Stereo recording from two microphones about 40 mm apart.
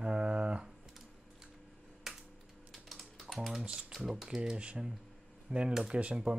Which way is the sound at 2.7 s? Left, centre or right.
Centre.